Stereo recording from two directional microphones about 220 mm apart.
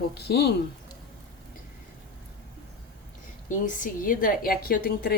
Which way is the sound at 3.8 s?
40° left (ahead or behind).